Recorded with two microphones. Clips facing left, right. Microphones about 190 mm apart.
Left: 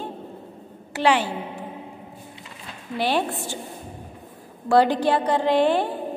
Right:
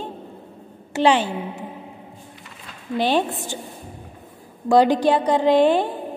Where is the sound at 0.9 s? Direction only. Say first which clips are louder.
Right 3 dB; 20° right (ahead or behind).